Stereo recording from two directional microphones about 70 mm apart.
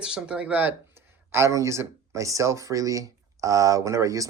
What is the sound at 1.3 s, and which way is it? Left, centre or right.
Speech, right.